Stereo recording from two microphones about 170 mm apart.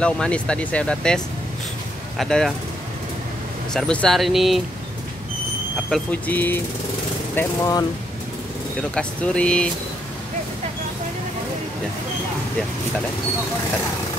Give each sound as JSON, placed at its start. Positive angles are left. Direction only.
{"t": 0.0, "sound": "speech", "side_deg": 5}
{"t": 3.7, "sound": "speech", "side_deg": 5}
{"t": 5.9, "sound": "speech", "side_deg": 5}
{"t": 8.9, "sound": "speech", "side_deg": 5}